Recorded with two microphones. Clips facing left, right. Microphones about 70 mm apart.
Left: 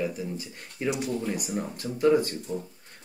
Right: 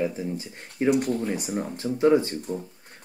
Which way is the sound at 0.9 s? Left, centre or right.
Right.